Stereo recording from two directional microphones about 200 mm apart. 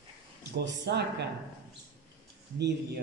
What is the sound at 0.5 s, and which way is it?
Speech, 55° right (ahead or behind).